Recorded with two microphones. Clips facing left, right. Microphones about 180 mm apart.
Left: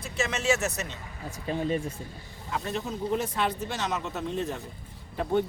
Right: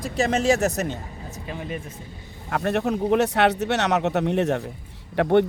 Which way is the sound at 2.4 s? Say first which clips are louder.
Right 9 dB; 65° right (ahead or behind).